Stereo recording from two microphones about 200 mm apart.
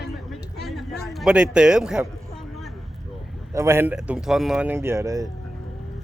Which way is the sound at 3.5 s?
15° right (ahead or behind).